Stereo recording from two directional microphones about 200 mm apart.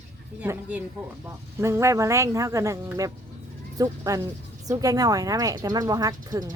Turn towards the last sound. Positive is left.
turn(degrees=-20)  # may be behind; listen again after turning